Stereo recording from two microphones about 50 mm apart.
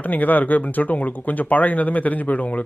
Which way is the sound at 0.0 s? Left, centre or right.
Left.